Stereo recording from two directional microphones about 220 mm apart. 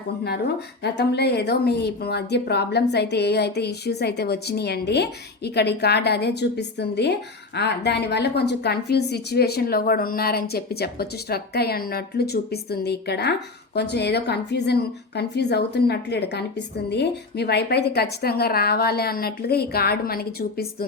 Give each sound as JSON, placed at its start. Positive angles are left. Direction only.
{"t": 0.8, "sound": "speech", "side_deg": 50}